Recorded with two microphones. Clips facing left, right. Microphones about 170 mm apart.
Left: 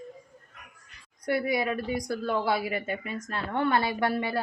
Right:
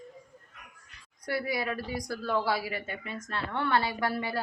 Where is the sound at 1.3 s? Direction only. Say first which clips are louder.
Left 5 dB; 20° left (ahead or behind).